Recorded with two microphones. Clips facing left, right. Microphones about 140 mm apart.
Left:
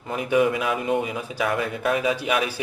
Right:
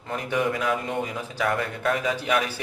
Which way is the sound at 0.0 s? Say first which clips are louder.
Left 5 dB; 10° left (ahead or behind).